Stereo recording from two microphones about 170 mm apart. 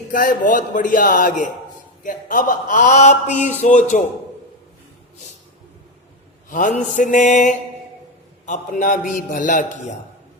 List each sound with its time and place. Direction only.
0.1 s speech: 50° left (ahead or behind)
6.5 s speech: 50° left (ahead or behind)